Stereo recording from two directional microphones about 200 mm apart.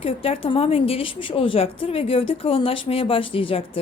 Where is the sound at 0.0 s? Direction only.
30° left (ahead or behind).